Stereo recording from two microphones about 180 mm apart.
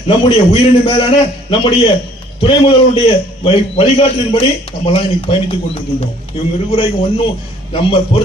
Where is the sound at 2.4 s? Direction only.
30° left (ahead or behind).